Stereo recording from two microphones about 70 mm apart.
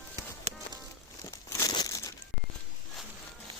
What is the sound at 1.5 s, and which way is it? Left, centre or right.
Crumpling, left.